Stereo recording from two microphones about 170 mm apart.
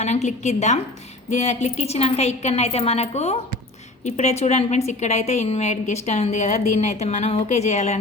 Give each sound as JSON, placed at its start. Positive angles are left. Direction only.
{"t": 0.0, "sound": "a woman's voice", "side_deg": 40}